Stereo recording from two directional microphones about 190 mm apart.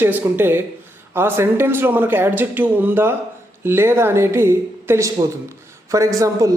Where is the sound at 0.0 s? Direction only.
10° right (ahead or behind).